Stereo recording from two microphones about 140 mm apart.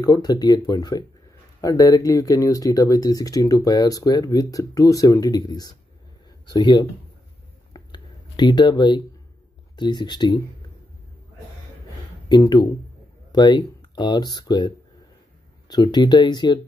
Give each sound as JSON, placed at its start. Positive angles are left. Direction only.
{"t": 0.0, "sound": "speech", "side_deg": 25}
{"t": 7.7, "sound": "a sound", "side_deg": 30}
{"t": 9.8, "sound": "speech", "side_deg": 30}
{"t": 12.3, "sound": "speech", "side_deg": 30}
{"t": 15.7, "sound": "speech", "side_deg": 30}